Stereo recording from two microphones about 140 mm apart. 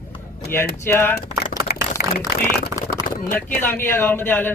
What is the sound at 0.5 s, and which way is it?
Speech, 15° left (ahead or behind).